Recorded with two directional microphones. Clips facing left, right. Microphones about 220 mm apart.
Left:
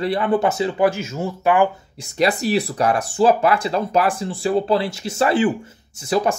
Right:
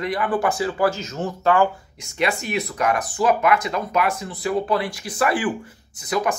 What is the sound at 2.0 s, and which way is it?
Speech, 35° left (ahead or behind).